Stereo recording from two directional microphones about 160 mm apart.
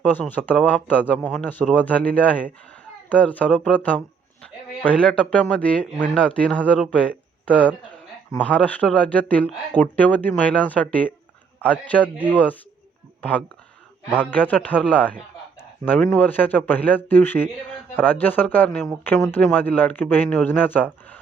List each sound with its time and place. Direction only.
0.0 s speech: 10° left (ahead or behind)
12.1 s speech: 10° right (ahead or behind)
14.2 s speech: 10° left (ahead or behind)